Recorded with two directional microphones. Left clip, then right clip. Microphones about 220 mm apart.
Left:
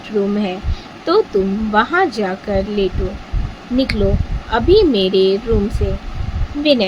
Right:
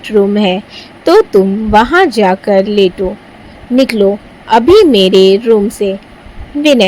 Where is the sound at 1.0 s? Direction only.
30° right (ahead or behind).